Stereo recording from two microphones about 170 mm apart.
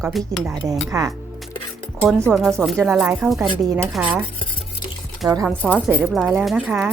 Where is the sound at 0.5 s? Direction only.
20° right (ahead or behind).